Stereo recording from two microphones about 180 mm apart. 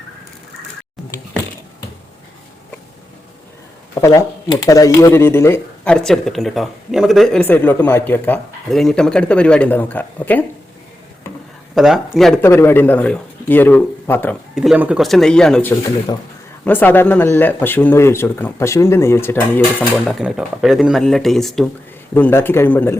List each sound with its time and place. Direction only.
3.9 s speech: 20° left (ahead or behind)
11.7 s speech: centre (ahead or behind)
12.4 s speech: 15° left (ahead or behind)
14.5 s speech: 5° right (ahead or behind); by 19.6 s 15° left (ahead or behind)
20.1 s speech: centre (ahead or behind)
22.1 s speech: 10° left (ahead or behind)